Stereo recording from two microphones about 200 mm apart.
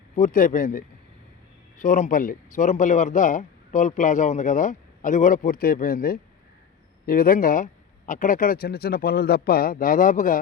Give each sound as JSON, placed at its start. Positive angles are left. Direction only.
{"t": 0.2, "sound": "speech", "side_deg": 45}